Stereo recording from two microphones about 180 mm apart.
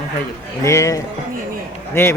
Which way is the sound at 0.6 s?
15° left (ahead or behind).